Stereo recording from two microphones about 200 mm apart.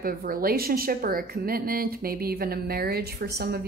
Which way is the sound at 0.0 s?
45° right (ahead or behind).